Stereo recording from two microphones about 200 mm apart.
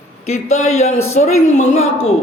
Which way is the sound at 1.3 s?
90° left.